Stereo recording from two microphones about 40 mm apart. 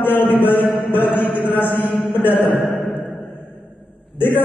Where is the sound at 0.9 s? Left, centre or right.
Left.